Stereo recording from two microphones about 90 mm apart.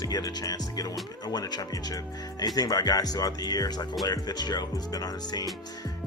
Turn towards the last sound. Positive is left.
turn(degrees=45)  # may be behind; listen again after turning